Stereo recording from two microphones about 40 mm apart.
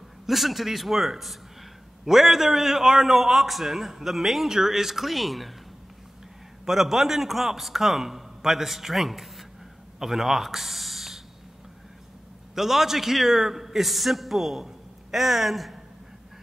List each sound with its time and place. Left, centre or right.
0.3 s a man's voice: centre
6.6 s a man's voice: centre
12.5 s a man's voice: centre